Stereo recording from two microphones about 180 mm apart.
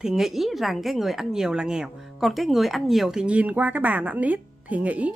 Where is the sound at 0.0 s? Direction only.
Centre (ahead or behind).